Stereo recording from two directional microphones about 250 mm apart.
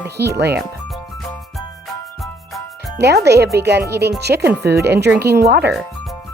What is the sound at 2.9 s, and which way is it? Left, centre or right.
Speech, right.